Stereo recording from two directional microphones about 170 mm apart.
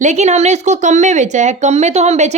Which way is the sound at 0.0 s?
45° right (ahead or behind).